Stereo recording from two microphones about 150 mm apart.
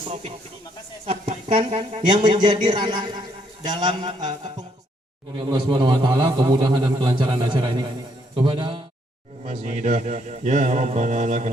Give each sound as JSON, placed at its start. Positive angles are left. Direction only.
{"t": 0.1, "sound": "a man's voice", "side_deg": -50}
{"t": 2.0, "sound": "a man's voice", "side_deg": -30}
{"t": 9.4, "sound": "a man's voice", "side_deg": -50}